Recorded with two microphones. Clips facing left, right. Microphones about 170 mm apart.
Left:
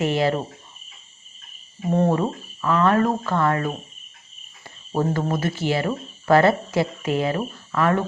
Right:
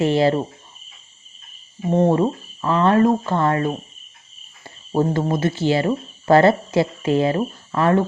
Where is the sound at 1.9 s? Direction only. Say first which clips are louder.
Right 4 dB; 20° right (ahead or behind).